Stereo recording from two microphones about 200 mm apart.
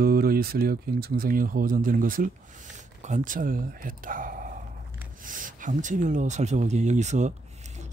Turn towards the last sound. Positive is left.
turn(degrees=-35)  # may be behind; listen again after turning